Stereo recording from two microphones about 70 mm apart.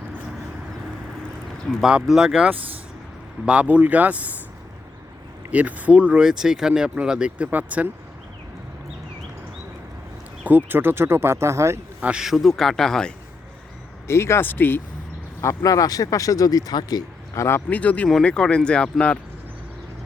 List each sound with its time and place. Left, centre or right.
1.8 s speech: centre
3.4 s speech: centre
5.5 s speech: right
10.4 s speech: right
11.9 s speech: centre
12.2 s speech: centre
14.1 s speech: left
15.4 s speech: left
15.7 s speech: left
17.3 s speech: left
17.7 s speech: left